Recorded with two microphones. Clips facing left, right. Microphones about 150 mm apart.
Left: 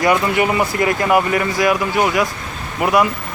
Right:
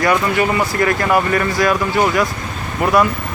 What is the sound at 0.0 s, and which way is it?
Speech, 20° left (ahead or behind).